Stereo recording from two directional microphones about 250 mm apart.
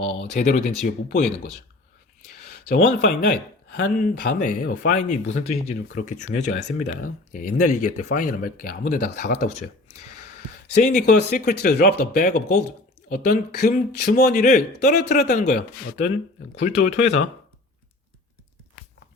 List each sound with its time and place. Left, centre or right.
0.3 s speech: left
2.6 s speech: left
11.0 s speech: left